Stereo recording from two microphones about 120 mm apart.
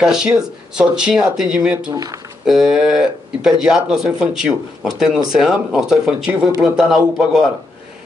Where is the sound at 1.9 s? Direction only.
30° right (ahead or behind).